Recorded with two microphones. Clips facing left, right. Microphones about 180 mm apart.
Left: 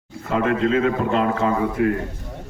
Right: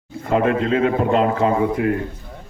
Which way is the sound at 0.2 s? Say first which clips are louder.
Right 2 dB; 30° right (ahead or behind).